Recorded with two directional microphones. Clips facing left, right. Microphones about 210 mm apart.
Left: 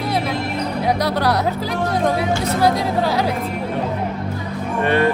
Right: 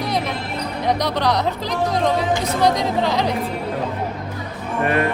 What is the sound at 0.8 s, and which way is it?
A woman's voice, 10° left (ahead or behind).